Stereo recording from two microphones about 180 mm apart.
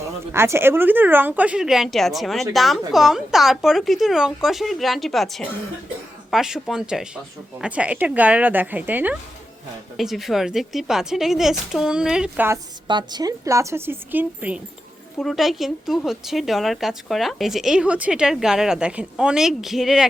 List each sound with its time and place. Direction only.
0.3 s a woman's voice: 15° right (ahead or behind)
12.9 s a woman's voice: 25° right (ahead or behind); by 20.1 s centre (ahead or behind)